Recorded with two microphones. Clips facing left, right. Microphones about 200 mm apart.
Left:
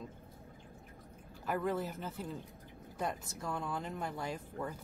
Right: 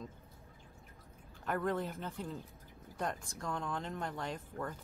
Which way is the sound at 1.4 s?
5° left (ahead or behind).